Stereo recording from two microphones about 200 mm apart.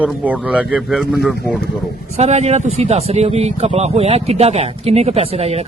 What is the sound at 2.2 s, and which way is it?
Speech, 35° right (ahead or behind).